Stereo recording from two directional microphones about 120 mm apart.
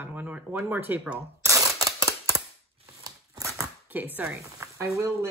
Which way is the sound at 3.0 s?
25° right (ahead or behind).